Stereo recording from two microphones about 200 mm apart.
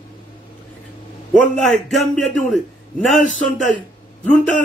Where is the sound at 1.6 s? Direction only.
Centre (ahead or behind).